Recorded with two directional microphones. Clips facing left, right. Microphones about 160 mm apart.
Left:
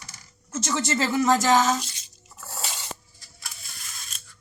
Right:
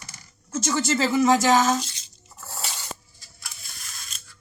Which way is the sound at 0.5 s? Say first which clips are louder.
Right 2 dB; 5° right (ahead or behind).